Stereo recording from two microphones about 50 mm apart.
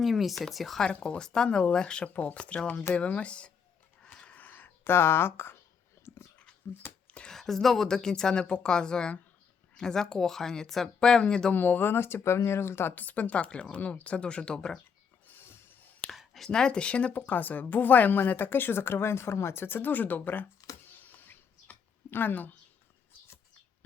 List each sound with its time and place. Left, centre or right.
0.0 s speech: centre
0.9 s speech: left
2.0 s speech: left
4.0 s a sound: centre
4.4 s a sound: left
4.8 s speech: left
6.6 s a woman's voice: left
7.3 s speech: centre
11.5 s speech: left
12.9 s speech: left; by 14.8 s centre
16.1 s a sound: centre
16.5 s a woman's voice: centre; by 20.5 s left
20.9 s a sound: left
22.1 s a woman's voice: left